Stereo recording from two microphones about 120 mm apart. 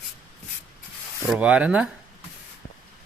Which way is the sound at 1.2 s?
10° right (ahead or behind).